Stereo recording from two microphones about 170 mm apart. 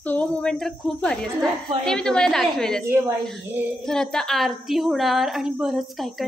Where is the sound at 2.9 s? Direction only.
15° right (ahead or behind).